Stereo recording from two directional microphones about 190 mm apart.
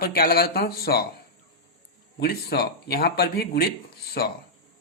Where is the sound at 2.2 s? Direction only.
55° left (ahead or behind).